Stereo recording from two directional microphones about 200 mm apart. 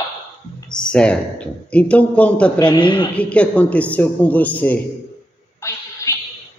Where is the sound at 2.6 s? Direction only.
25° left (ahead or behind).